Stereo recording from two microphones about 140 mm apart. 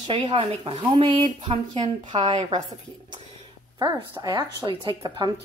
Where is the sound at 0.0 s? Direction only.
35° right (ahead or behind).